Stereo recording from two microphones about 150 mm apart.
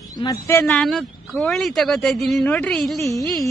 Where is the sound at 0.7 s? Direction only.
5° left (ahead or behind).